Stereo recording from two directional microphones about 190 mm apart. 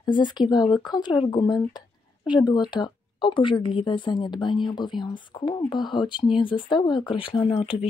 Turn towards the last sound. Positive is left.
turn(degrees=30)  # may be behind; listen again after turning